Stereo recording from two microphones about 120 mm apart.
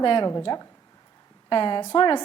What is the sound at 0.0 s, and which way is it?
A woman's voice, 40° left (ahead or behind).